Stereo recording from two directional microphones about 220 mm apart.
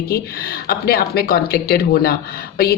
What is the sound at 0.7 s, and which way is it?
Speech, 45° left (ahead or behind).